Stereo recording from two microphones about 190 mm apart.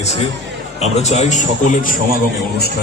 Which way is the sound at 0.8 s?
35° left (ahead or behind).